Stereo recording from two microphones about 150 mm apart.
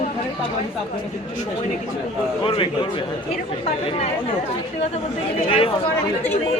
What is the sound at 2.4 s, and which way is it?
Speech, 35° left (ahead or behind).